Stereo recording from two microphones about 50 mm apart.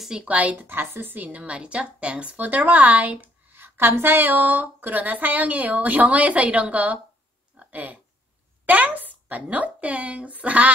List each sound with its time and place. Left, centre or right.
0.0 s a woman's voice: centre
0.3 s a woman's voice: right
0.6 s a woman's voice: right
1.3 s a woman's voice: right
2.3 s a woman's voice: right
3.5 s a woman's voice: right
7.5 s a sound: right
8.6 s a woman's voice: right